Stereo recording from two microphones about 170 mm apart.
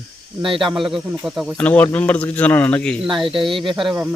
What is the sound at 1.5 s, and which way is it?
Speech, 10° left (ahead or behind).